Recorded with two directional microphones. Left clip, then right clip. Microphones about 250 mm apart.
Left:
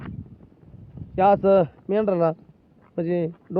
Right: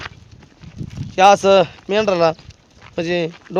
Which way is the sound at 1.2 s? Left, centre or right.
Centre.